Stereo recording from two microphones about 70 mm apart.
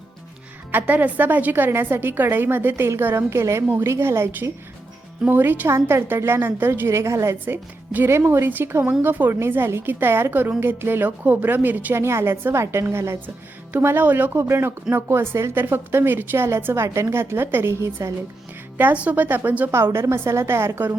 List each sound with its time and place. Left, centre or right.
0.7 s a woman's voice: right
7.4 s a woman's voice: right
11.9 s a woman's voice: right
18.8 s a woman's voice: right